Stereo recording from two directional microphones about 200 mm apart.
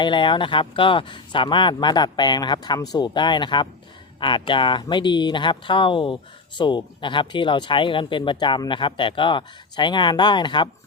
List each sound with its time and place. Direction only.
0.0 s speech: 25° left (ahead or behind)